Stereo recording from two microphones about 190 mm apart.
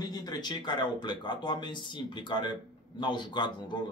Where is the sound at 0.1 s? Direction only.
20° left (ahead or behind).